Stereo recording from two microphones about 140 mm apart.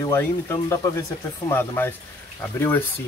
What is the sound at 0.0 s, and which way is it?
Speech, 20° left (ahead or behind).